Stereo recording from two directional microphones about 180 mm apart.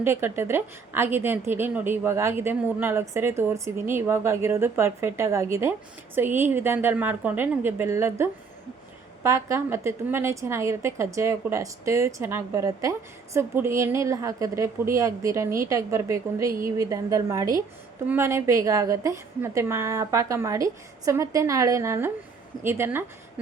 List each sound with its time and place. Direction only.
0.0 s a woman's voice: 10° right (ahead or behind)